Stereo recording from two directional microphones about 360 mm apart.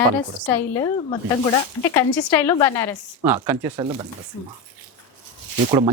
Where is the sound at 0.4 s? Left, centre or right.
Centre.